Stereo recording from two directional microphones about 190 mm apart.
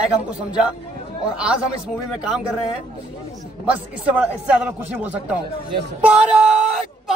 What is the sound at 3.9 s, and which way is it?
Speech, 5° right (ahead or behind).